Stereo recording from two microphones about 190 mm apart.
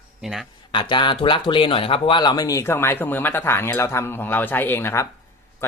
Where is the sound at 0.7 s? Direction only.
25° left (ahead or behind).